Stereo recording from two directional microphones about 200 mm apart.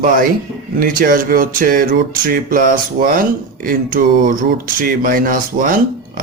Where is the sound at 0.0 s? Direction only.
45° right (ahead or behind).